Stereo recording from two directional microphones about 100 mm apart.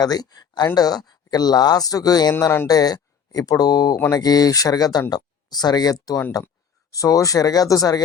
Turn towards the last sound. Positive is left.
turn(degrees=35)  # may be behind; listen again after turning